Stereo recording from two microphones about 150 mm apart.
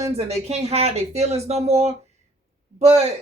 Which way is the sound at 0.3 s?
45° right (ahead or behind).